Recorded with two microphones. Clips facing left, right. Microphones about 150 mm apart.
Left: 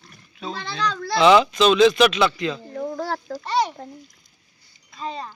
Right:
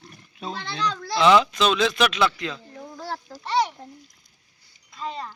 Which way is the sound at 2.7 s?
60° left (ahead or behind).